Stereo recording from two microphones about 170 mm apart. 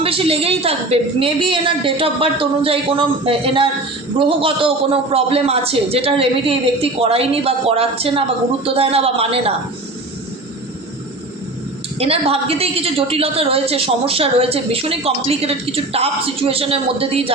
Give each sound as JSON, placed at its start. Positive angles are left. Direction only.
{"t": 0.0, "sound": "a woman's voice", "side_deg": -35}
{"t": 11.9, "sound": "a woman's voice", "side_deg": -35}